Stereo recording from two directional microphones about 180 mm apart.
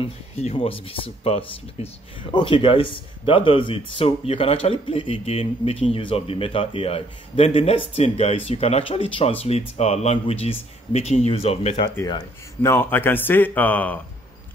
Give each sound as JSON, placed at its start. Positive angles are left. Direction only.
{"t": 0.0, "sound": "speech", "side_deg": 35}
{"t": 11.8, "sound": "speech", "side_deg": 20}
{"t": 12.6, "sound": "speech", "side_deg": 10}